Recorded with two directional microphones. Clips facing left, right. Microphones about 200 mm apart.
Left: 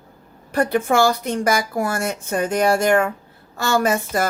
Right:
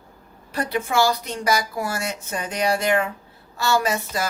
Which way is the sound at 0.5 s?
50° left (ahead or behind).